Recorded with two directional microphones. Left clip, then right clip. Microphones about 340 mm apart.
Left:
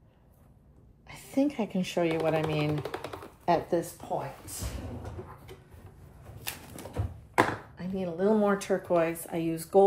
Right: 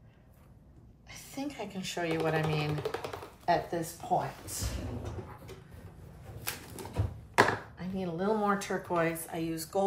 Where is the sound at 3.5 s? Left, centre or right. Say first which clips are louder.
Left 3 dB; left.